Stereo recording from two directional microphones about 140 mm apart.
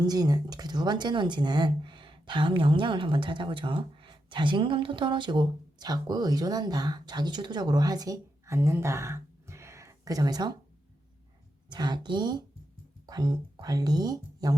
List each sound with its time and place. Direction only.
0.0 s speech: 30° right (ahead or behind)
11.7 s speech: 30° right (ahead or behind)